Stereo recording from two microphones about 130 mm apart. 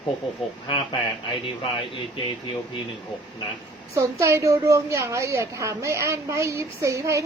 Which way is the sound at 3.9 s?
25° right (ahead or behind).